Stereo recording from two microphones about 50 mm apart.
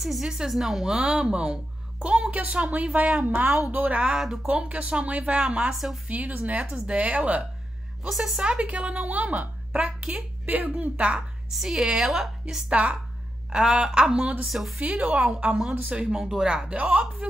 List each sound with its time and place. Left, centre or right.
0.0 s a woman's voice: centre; by 4.0 s right
4.0 s a woman's voice: centre
4.5 s a woman's voice: right
6.0 s a woman's voice: right
8.1 s a woman's voice: centre
8.4 s a woman's voice: right
11.5 s a woman's voice: centre
12.6 s a woman's voice: right
16.6 s a woman's voice: right